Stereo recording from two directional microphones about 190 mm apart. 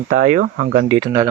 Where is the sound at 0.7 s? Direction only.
35° right (ahead or behind).